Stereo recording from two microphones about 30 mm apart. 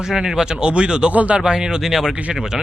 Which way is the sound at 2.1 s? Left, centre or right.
Right.